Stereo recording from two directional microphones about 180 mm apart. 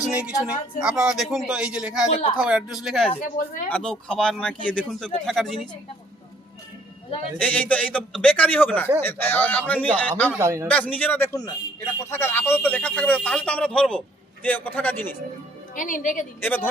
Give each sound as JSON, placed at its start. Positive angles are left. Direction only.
{"t": 0.0, "sound": "a woman's voice", "side_deg": -5}
{"t": 3.2, "sound": "speech", "side_deg": 50}
{"t": 3.7, "sound": "speech", "side_deg": 5}
{"t": 7.3, "sound": "a man's voice", "side_deg": 5}
{"t": 10.3, "sound": "a man's voice", "side_deg": -15}
{"t": 10.7, "sound": "a man's voice", "side_deg": 5}
{"t": 15.7, "sound": "speech", "side_deg": 45}
{"t": 16.4, "sound": "a man's voice", "side_deg": 10}